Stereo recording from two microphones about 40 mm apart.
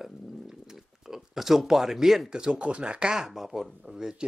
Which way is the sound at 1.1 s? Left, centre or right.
Centre.